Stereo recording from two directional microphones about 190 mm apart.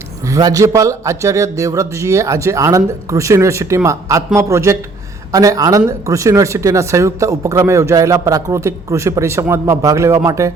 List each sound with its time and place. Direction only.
0.3 s speech: 20° right (ahead or behind)